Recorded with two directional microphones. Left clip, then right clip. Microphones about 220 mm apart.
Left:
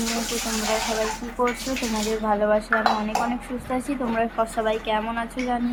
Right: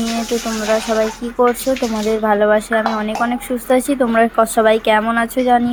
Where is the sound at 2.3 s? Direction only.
25° right (ahead or behind).